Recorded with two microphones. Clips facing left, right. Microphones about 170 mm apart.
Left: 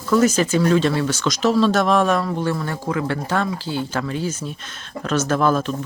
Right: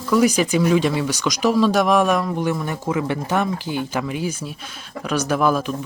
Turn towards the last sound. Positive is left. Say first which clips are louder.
# even
turn(degrees=-10)  # may be behind; listen again after turning